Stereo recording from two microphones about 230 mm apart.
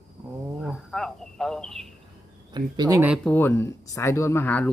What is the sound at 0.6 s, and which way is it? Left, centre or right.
Speech, centre.